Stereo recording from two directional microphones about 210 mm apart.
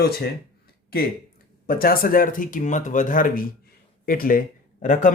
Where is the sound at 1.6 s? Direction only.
45° left (ahead or behind).